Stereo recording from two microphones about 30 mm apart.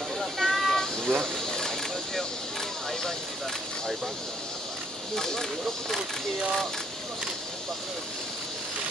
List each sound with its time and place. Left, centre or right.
0.2 s a sound: centre
0.7 s vehicle: centre
5.1 s speech: centre